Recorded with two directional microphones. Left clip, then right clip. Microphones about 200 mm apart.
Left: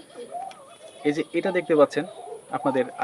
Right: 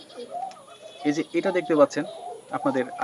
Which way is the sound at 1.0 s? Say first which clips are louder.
Even; 25° left (ahead or behind).